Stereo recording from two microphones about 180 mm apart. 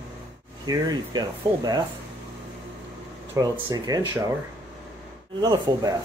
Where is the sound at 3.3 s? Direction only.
25° right (ahead or behind).